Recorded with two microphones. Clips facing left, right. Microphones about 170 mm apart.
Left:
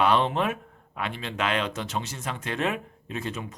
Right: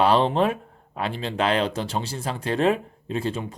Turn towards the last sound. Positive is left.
turn(degrees=-30)  # may be behind; listen again after turning